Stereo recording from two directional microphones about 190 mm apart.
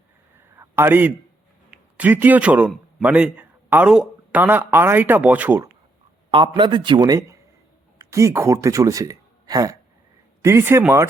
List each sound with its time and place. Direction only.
0.5 s a sound: 15° right (ahead or behind)
1.7 s a man's voice: 10° right (ahead or behind)
6.3 s a man's voice: 25° right (ahead or behind)